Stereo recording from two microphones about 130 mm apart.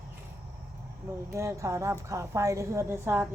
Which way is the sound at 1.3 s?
20° right (ahead or behind).